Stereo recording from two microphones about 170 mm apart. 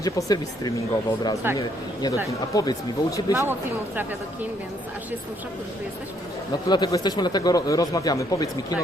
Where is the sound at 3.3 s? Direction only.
15° right (ahead or behind).